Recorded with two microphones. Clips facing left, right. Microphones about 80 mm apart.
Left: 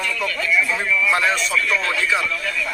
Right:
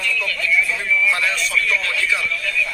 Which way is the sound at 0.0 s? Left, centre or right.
Left.